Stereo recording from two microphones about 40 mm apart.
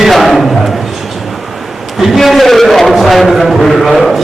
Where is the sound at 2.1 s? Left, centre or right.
Centre.